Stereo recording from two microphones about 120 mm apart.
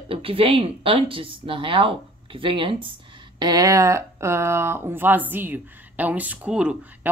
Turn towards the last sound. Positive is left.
turn(degrees=-10)  # may be behind; listen again after turning